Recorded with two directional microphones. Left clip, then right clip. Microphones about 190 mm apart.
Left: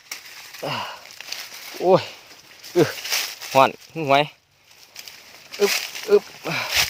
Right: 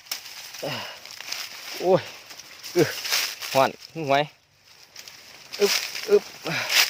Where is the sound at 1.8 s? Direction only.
30° left (ahead or behind).